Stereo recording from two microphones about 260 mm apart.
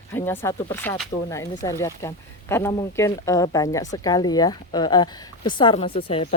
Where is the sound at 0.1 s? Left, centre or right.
Centre.